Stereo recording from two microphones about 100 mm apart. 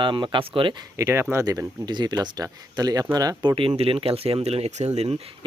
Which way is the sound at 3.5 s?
60° right (ahead or behind).